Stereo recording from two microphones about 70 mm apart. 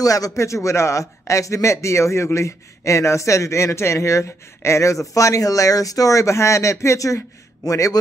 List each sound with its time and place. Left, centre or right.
0.0 s speech: left